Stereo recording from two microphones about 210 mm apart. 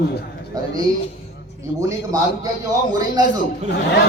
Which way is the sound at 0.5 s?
15° right (ahead or behind).